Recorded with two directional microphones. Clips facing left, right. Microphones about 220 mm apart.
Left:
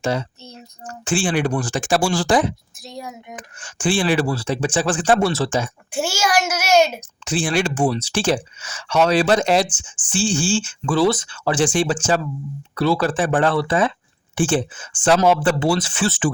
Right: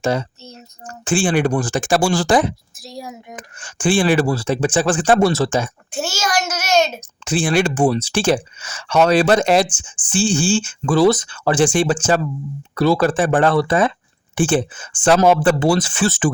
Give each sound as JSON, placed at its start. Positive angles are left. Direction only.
{"t": 0.0, "sound": "speech", "side_deg": -45}
{"t": 2.8, "sound": "speech", "side_deg": 0}
{"t": 3.6, "sound": "speech", "side_deg": -50}
{"t": 5.9, "sound": "a child's voice", "side_deg": 10}
{"t": 7.3, "sound": "speech", "side_deg": -55}
{"t": 12.7, "sound": "speech", "side_deg": -45}